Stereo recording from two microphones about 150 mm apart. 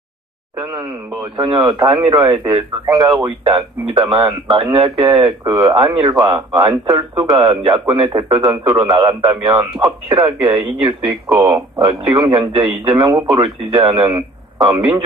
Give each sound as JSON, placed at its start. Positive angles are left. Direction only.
{"t": 1.3, "sound": "a man's voice", "side_deg": -30}
{"t": 11.3, "sound": "speech", "side_deg": -15}